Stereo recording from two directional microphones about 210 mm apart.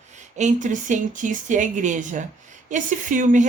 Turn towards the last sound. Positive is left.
turn(degrees=-35)  # may be behind; listen again after turning